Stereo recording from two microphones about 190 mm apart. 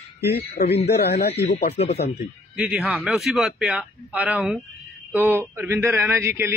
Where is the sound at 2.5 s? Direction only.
5° right (ahead or behind).